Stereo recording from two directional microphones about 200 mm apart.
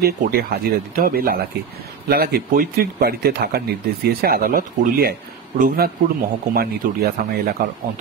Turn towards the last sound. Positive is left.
turn(degrees=-50)  # may be behind; listen again after turning